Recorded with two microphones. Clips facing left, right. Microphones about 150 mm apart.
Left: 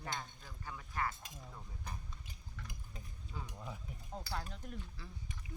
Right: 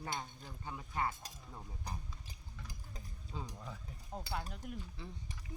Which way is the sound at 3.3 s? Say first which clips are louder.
Right 3 dB; 25° right (ahead or behind).